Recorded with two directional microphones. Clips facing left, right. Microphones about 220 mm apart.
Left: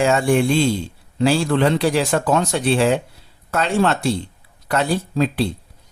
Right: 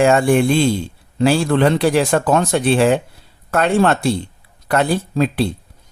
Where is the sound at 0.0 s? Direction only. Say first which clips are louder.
Right 3 dB; 55° right (ahead or behind).